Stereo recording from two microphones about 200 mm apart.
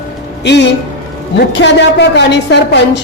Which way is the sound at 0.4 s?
60° left (ahead or behind).